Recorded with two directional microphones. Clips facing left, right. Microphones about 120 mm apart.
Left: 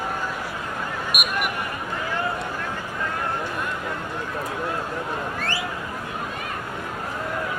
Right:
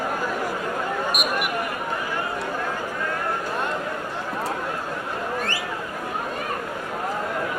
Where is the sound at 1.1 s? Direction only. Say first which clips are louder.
Right 3 dB; 10° left (ahead or behind).